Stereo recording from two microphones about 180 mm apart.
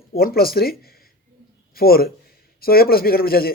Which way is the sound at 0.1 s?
55° left (ahead or behind).